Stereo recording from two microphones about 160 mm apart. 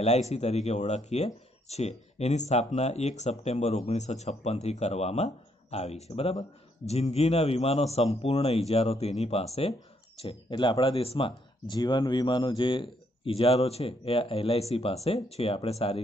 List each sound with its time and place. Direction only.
0.0 s speech: 45° left (ahead or behind)